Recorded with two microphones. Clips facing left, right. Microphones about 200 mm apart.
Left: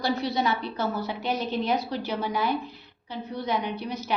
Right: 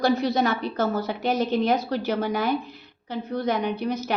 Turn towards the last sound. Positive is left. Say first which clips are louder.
# right 6 dB
turn(degrees=-45)  # may be behind; listen again after turning